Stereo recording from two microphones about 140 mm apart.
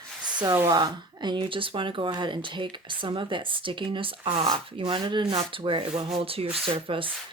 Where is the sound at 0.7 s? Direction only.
30° right (ahead or behind).